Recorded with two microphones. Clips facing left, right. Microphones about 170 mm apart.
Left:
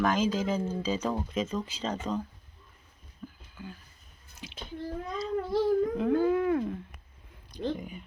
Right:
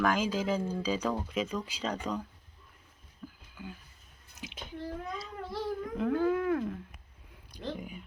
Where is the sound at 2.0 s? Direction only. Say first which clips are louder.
Left 4 dB; 10° left (ahead or behind).